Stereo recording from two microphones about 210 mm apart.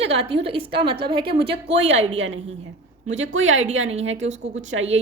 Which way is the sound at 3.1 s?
65° right (ahead or behind).